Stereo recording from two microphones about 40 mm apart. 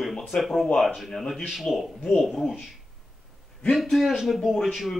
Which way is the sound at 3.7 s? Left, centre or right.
Centre.